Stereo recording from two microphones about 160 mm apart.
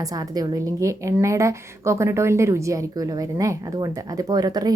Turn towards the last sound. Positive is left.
turn(degrees=-25)  # may be behind; listen again after turning